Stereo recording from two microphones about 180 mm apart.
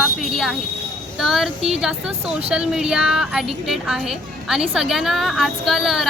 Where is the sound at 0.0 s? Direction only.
Centre (ahead or behind).